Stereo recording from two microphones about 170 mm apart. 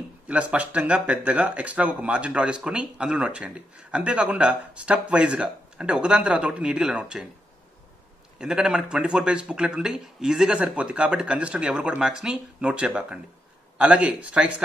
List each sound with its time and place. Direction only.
0.3 s speech: 5° right (ahead or behind)
8.4 s a man's voice: 5° right (ahead or behind)